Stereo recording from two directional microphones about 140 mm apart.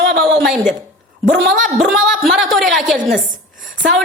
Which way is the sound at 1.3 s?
75° right (ahead or behind).